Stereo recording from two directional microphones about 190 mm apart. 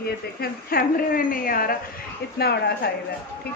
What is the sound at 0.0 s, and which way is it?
A woman's voice, 50° left (ahead or behind).